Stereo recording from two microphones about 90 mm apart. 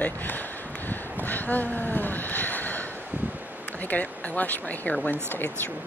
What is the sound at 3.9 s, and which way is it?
Speech, 20° left (ahead or behind).